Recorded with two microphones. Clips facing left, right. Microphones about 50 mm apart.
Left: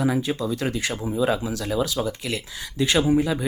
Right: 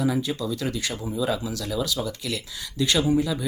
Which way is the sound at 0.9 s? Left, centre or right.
Centre.